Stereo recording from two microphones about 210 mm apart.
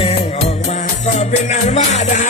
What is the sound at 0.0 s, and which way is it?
Music, 30° left (ahead or behind).